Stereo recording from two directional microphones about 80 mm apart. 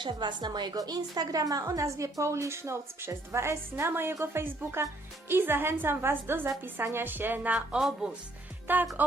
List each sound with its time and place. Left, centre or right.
0.0 s a woman's voice: right; by 7.8 s centre
7.8 s speech: centre
8.6 s speech: right